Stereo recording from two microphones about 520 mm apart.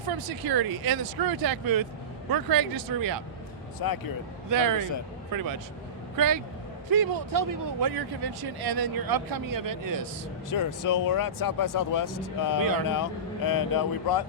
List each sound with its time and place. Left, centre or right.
0.2 s speech: right
3.8 s speech: left
4.4 s speech: right
10.5 s speech: left